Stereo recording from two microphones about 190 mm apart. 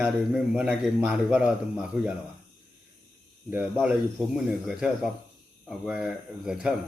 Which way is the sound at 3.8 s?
5° right (ahead or behind).